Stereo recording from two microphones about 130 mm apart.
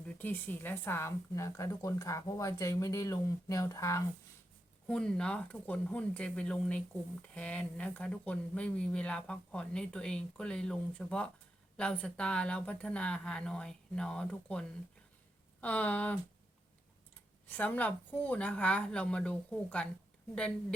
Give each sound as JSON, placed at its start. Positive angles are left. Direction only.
{"t": 0.2, "sound": "speech", "side_deg": 15}
{"t": 4.9, "sound": "speech", "side_deg": 5}
{"t": 15.6, "sound": "speech", "side_deg": 10}
{"t": 17.6, "sound": "speech", "side_deg": 10}